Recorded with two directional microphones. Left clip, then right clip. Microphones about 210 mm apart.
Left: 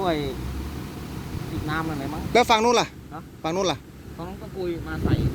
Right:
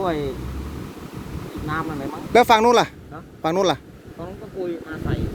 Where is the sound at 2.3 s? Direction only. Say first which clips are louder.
Right 4 dB; 25° right (ahead or behind).